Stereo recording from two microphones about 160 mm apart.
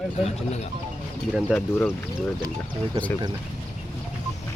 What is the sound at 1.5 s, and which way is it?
Music, centre (ahead or behind).